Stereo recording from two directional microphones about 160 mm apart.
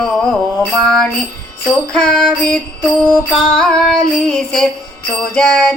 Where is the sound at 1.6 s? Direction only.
5° left (ahead or behind).